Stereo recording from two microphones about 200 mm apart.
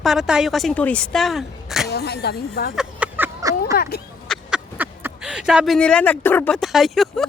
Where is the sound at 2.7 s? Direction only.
10° right (ahead or behind).